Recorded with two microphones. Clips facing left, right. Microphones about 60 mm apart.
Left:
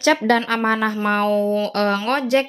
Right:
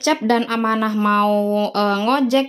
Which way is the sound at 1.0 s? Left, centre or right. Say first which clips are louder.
Right 3 dB; left.